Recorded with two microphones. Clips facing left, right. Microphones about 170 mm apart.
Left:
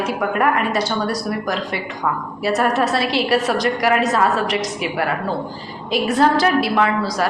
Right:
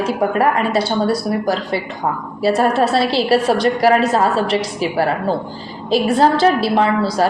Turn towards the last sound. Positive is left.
turn(degrees=-30)  # may be behind; listen again after turning